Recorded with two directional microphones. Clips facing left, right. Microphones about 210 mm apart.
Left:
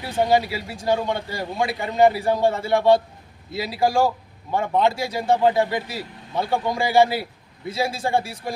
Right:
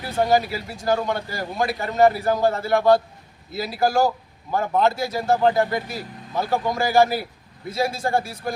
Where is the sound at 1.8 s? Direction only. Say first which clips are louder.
Even; 15° left (ahead or behind).